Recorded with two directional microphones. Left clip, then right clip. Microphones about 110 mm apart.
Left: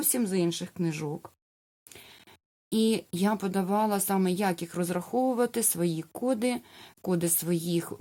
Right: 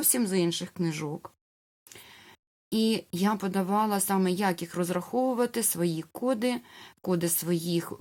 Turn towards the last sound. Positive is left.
turn(degrees=40)  # may be behind; listen again after turning